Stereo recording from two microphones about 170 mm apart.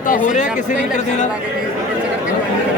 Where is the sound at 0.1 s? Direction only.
45° left (ahead or behind).